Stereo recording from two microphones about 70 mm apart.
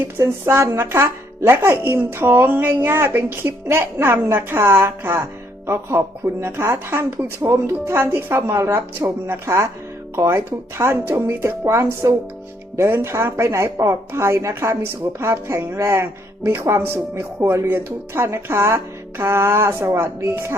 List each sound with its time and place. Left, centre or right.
0.2 s a woman's voice: right